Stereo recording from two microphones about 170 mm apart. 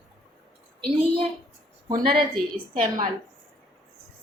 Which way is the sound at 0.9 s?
35° right (ahead or behind).